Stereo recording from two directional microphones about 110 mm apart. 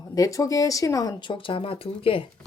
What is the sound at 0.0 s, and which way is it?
Speech, 30° left (ahead or behind).